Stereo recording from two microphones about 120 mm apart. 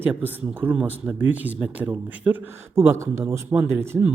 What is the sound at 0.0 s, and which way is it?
Speech, 15° right (ahead or behind).